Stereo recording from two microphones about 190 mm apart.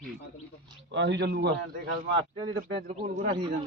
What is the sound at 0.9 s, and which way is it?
Speech, 70° right (ahead or behind).